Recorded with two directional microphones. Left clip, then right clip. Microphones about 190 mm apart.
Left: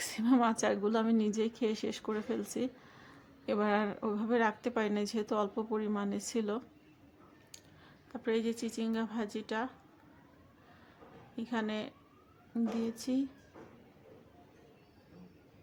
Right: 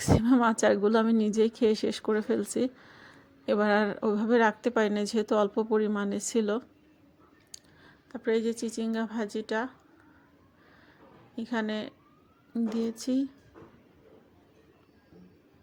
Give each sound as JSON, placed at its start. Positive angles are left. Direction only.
{"t": 0.0, "sound": "a woman's voice", "side_deg": -20}
{"t": 7.5, "sound": "a sound", "side_deg": -20}
{"t": 8.1, "sound": "a woman's voice", "side_deg": -20}
{"t": 11.3, "sound": "a woman's voice", "side_deg": -20}